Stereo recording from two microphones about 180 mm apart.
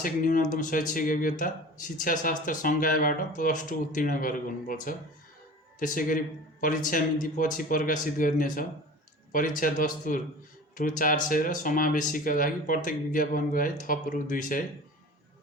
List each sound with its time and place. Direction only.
0.0 s speech: 50° left (ahead or behind)